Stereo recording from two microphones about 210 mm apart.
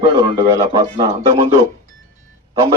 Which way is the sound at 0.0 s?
20° right (ahead or behind).